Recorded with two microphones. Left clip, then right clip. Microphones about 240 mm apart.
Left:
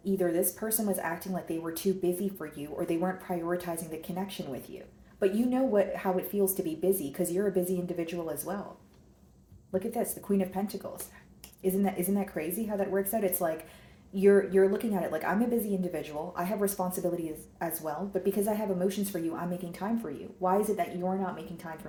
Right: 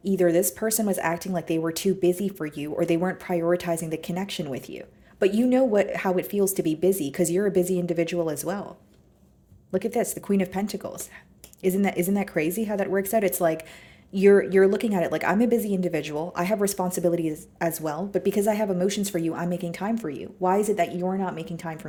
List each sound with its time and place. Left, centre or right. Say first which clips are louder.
0.0 s speech: right 7 dB; right
9.7 s speech: right 6 dB; right